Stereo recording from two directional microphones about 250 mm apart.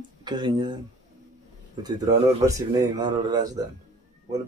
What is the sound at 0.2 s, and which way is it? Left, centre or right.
Speech, centre.